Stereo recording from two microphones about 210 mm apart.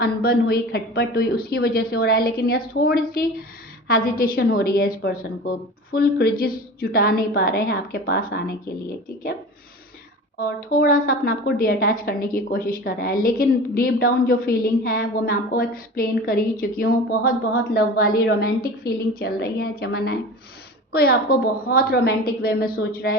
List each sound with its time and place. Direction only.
0.0 s a woman's voice: 45° left (ahead or behind)
10.4 s a woman's voice: 40° left (ahead or behind)